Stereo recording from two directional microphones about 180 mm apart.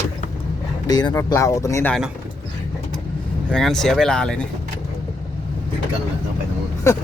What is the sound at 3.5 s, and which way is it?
Speech, centre (ahead or behind).